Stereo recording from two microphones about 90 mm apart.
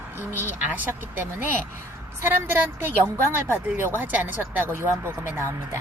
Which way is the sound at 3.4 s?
25° right (ahead or behind).